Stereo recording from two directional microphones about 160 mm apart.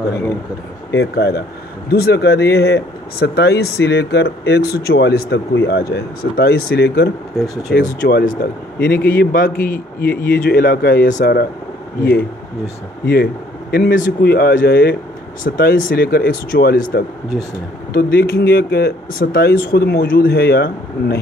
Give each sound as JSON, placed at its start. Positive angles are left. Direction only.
{"t": 0.9, "sound": "speech", "side_deg": 90}
{"t": 7.7, "sound": "speech", "side_deg": 70}
{"t": 13.0, "sound": "speech", "side_deg": 80}